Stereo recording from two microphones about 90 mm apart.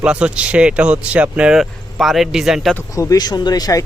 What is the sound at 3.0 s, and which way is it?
Speech, 45° left (ahead or behind).